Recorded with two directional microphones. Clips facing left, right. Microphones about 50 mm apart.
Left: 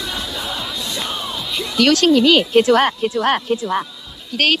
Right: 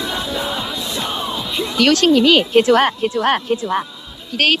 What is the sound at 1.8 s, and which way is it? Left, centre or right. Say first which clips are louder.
A woman's voice: even; right.